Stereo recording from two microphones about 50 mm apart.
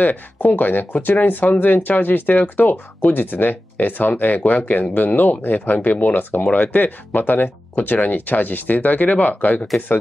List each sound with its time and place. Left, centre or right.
0.0 s speech: left